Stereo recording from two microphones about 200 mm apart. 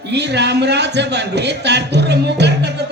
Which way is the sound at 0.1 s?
60° right (ahead or behind).